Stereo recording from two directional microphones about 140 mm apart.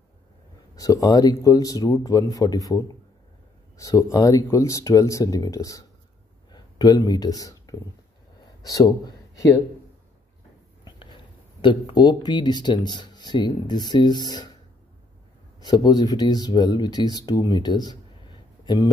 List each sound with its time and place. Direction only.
0.7 s speech: 25° left (ahead or behind)
10.8 s a sound: 35° left (ahead or behind)
11.6 s speech: 35° left (ahead or behind)
15.6 s speech: 30° left (ahead or behind)